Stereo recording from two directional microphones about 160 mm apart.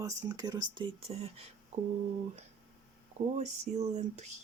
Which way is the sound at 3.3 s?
45° right (ahead or behind).